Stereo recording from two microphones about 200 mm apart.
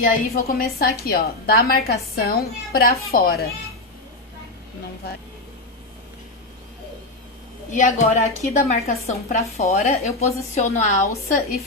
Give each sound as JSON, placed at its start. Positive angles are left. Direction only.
{"t": 0.0, "sound": "a woman's voice", "side_deg": 45}
{"t": 7.7, "sound": "a woman's voice", "side_deg": 40}